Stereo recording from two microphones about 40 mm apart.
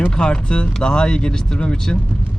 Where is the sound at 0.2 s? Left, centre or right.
Left.